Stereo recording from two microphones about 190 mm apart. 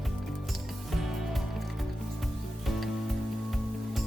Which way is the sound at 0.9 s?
Centre (ahead or behind).